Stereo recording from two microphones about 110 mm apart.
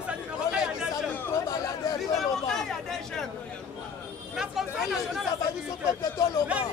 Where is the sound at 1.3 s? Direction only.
35° left (ahead or behind).